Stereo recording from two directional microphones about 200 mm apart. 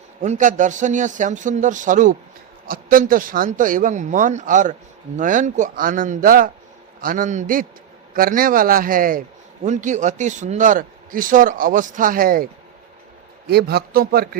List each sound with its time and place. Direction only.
0.2 s a man's voice: 40° right (ahead or behind)
13.5 s a man's voice: 55° right (ahead or behind)